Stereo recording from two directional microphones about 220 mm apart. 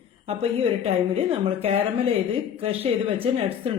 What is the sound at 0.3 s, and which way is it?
A woman's voice, 25° right (ahead or behind).